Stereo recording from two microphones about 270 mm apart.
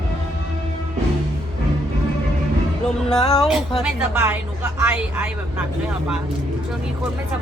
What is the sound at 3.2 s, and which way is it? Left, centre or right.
Speech, centre.